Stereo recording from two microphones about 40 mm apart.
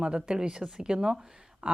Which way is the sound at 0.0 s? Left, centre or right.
Right.